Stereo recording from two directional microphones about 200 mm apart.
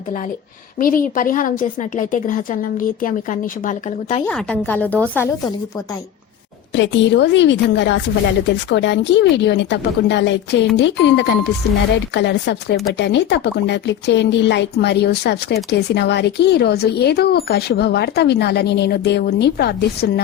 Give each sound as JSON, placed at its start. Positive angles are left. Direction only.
{"t": 0.8, "sound": "a woman's voice", "side_deg": 45}
{"t": 4.3, "sound": "a woman's voice", "side_deg": 5}
{"t": 6.7, "sound": "speech", "side_deg": 65}